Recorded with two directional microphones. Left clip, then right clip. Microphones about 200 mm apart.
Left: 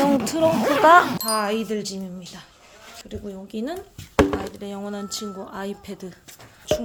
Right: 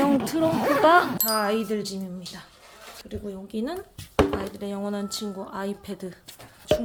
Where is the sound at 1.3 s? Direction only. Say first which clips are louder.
Left 1 dB; 5° left (ahead or behind).